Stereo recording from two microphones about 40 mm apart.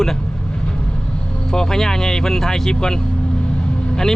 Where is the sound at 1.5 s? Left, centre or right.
Centre.